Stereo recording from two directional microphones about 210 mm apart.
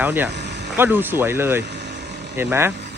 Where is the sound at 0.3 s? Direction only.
50° right (ahead or behind).